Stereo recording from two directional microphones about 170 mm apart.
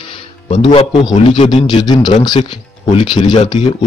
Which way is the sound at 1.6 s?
25° left (ahead or behind).